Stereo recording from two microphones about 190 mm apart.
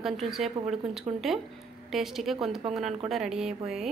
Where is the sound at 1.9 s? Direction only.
Centre (ahead or behind).